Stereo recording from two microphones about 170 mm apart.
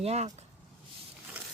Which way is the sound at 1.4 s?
10° right (ahead or behind).